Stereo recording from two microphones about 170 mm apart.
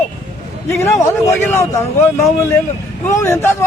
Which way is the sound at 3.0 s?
15° left (ahead or behind).